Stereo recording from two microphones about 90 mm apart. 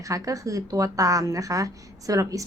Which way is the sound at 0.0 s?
40° right (ahead or behind).